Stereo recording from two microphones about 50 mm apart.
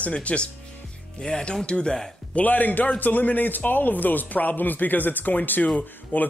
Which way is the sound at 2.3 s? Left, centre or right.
Left.